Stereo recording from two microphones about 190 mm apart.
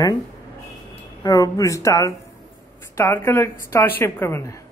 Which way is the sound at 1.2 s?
20° left (ahead or behind).